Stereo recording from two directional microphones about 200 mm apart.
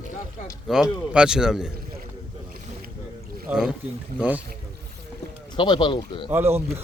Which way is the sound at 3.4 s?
Centre (ahead or behind).